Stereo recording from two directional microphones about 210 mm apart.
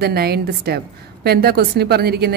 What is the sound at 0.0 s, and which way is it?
A woman's voice, 50° right (ahead or behind).